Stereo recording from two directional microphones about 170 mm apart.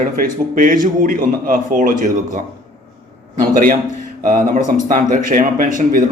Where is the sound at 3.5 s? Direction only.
50° right (ahead or behind).